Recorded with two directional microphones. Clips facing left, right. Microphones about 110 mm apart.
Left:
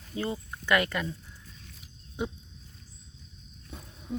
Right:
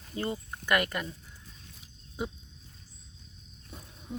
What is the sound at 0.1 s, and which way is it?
Speech, 10° left (ahead or behind).